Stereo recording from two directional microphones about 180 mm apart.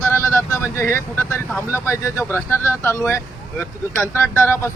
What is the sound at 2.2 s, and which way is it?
Speech, 10° left (ahead or behind).